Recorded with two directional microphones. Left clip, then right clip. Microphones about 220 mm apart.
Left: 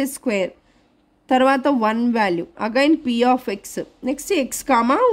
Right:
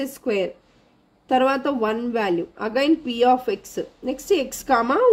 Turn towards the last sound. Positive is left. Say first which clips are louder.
# left 2 dB
turn(degrees=40)  # may be behind; listen again after turning